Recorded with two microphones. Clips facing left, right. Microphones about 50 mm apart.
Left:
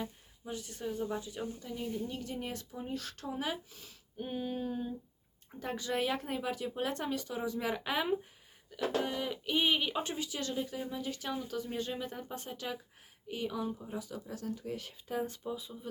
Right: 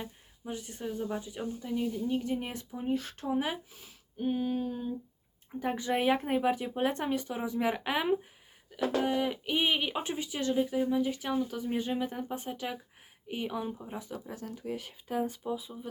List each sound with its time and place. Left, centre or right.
0.0 s speech: right
4.2 s a sound: centre
5.5 s speech: right
14.4 s speech: centre